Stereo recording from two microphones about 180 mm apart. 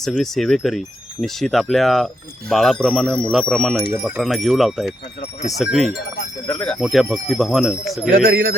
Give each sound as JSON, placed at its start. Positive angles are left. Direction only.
{"t": 0.0, "sound": "speech", "side_deg": 0}
{"t": 6.5, "sound": "speech", "side_deg": 15}
{"t": 6.7, "sound": "speech", "side_deg": 0}
{"t": 8.1, "sound": "speech", "side_deg": -55}